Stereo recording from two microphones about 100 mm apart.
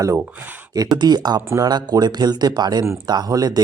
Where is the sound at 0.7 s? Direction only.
40° right (ahead or behind).